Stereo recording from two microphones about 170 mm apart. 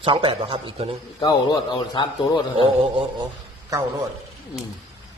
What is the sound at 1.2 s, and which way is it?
A man's voice, 25° left (ahead or behind).